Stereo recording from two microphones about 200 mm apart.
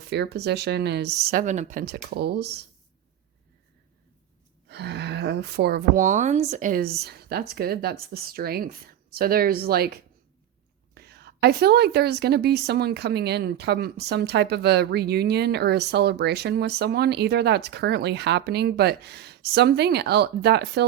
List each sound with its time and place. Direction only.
0.1 s a woman's voice: 55° right (ahead or behind)
4.7 s a woman's voice: 55° right (ahead or behind)